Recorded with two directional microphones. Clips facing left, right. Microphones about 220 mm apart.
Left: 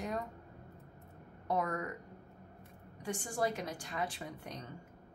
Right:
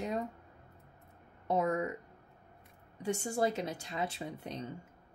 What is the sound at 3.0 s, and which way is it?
Speech, 25° right (ahead or behind).